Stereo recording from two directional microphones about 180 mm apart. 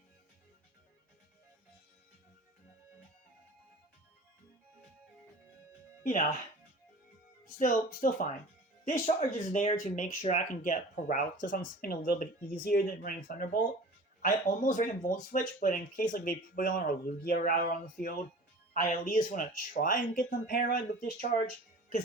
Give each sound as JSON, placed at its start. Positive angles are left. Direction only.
{"t": 6.0, "sound": "speech", "side_deg": 50}
{"t": 7.4, "sound": "speech", "side_deg": 45}
{"t": 21.4, "sound": "music", "side_deg": 55}